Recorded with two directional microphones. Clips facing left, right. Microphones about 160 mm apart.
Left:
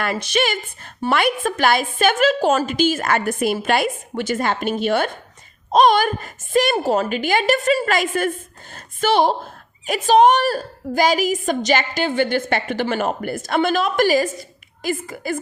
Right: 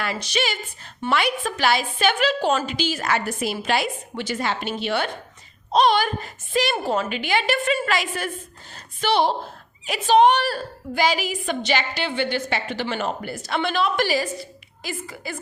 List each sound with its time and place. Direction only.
0.0 s a woman's voice: 50° left (ahead or behind)